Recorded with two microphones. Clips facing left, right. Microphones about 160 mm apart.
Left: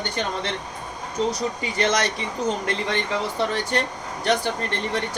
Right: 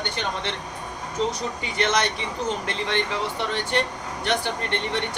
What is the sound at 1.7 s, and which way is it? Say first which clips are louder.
Speech: even; 35° left (ahead or behind).